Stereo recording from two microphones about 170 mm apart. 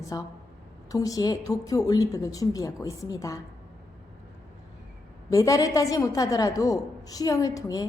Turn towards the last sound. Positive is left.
turn(degrees=20)  # may be behind; listen again after turning